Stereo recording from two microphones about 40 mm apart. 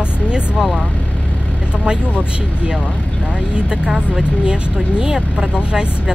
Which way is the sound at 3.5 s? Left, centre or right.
Right.